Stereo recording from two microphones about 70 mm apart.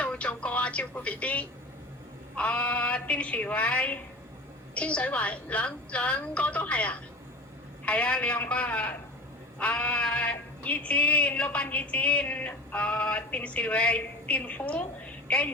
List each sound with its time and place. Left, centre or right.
0.0 s music: centre
2.3 s speech: centre